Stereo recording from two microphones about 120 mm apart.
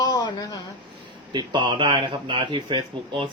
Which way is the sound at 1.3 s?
40° right (ahead or behind).